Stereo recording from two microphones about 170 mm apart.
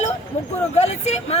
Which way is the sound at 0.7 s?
40° left (ahead or behind).